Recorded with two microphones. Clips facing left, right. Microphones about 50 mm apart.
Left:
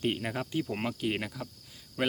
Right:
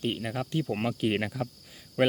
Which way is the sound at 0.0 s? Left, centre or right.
Centre.